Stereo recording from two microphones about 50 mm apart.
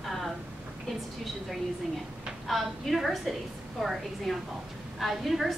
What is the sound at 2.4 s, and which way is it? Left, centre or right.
A woman's voice, centre.